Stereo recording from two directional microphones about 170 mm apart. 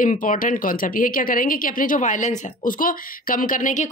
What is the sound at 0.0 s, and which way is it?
Speech, 45° left (ahead or behind).